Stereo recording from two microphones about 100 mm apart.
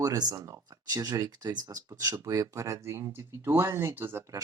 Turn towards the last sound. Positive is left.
turn(degrees=-25)  # may be behind; listen again after turning